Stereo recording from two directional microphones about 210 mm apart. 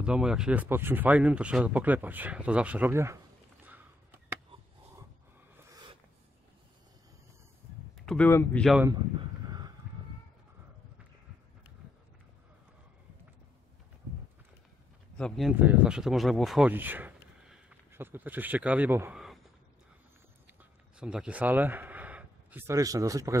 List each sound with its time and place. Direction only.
0.0 s speech: 5° right (ahead or behind)
8.0 s speech: 5° left (ahead or behind)
9.5 s a sound: 20° right (ahead or behind)
15.1 s speech: centre (ahead or behind)
21.0 s speech: 5° right (ahead or behind)